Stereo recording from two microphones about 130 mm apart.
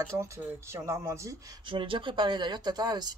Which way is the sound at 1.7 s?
40° right (ahead or behind).